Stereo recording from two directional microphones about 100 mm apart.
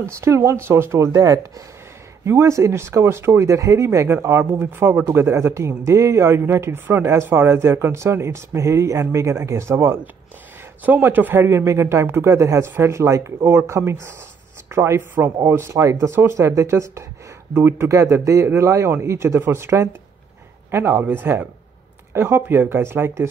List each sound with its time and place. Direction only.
0.2 s speech: 30° right (ahead or behind)